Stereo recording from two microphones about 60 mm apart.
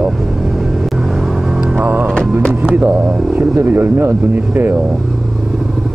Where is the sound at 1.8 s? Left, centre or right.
Right.